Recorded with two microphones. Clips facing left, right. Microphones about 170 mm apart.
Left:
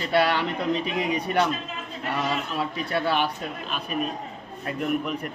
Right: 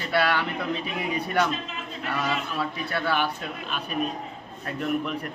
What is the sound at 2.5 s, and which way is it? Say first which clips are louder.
Speech: left 2 dB; 25° left (ahead or behind).